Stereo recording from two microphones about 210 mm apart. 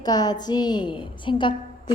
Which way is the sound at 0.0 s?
20° left (ahead or behind).